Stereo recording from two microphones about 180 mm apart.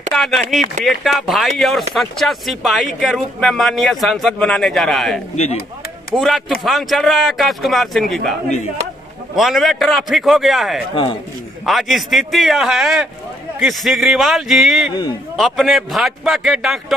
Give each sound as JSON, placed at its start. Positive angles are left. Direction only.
{"t": 0.1, "sound": "a man's voice", "side_deg": 0}
{"t": 5.3, "sound": "speech", "side_deg": 35}
{"t": 6.1, "sound": "a man's voice", "side_deg": 0}